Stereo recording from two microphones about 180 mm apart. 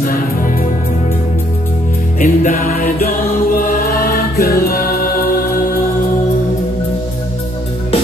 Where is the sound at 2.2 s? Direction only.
50° left (ahead or behind).